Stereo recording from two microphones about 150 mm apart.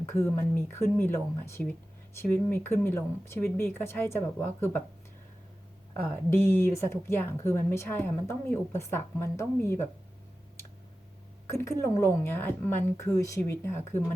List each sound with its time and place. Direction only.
0.0 s speech: 15° left (ahead or behind)
6.1 s speech: 15° left (ahead or behind)
11.4 s speech: 15° left (ahead or behind)